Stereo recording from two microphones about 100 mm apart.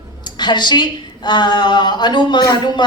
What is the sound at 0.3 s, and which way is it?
A woman's voice, 45° left (ahead or behind).